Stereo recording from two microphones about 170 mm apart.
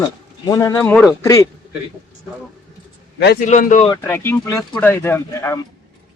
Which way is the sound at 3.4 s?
45° left (ahead or behind).